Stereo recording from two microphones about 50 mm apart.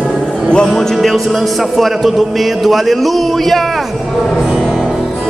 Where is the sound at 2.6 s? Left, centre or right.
Centre.